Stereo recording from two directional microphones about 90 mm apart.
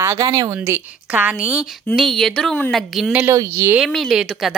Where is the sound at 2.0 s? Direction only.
5° left (ahead or behind).